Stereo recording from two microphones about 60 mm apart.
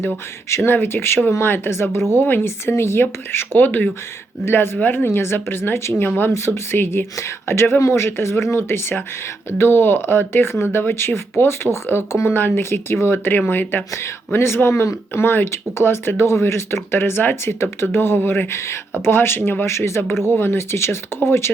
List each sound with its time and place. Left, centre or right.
0.5 s speech: left
20.2 s speech: left